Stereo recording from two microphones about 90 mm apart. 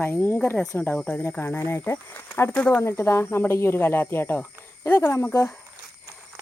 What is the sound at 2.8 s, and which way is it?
Speech, 30° left (ahead or behind).